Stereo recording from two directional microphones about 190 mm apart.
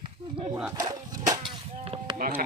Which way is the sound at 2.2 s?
50° right (ahead or behind).